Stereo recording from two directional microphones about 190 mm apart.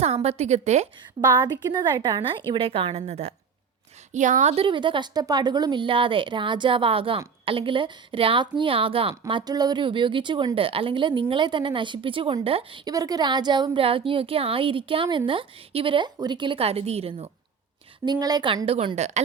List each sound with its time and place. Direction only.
0.0 s a woman's voice: 35° right (ahead or behind)
1.5 s speech: 20° right (ahead or behind)
18.0 s speech: 20° right (ahead or behind)